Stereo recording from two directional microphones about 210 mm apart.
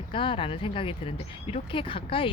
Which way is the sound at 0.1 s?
25° left (ahead or behind).